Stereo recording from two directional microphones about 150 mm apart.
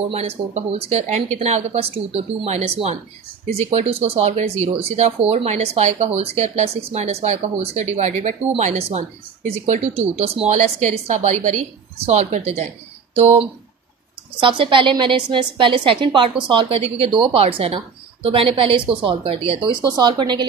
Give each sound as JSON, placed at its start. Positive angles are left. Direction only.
{"t": 0.1, "sound": "speech", "side_deg": -45}
{"t": 14.4, "sound": "a woman's voice", "side_deg": -35}